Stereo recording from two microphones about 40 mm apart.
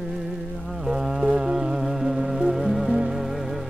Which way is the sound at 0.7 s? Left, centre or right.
Centre.